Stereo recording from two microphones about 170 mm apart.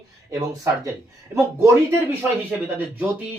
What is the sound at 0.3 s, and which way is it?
Speech, 20° right (ahead or behind).